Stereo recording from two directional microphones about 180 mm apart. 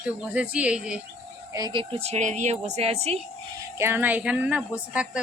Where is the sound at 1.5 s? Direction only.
25° right (ahead or behind).